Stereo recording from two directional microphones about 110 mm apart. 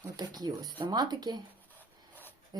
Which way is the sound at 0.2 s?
40° right (ahead or behind).